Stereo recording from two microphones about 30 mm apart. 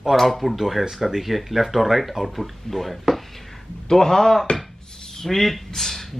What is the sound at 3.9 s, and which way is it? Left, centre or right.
Speech, centre.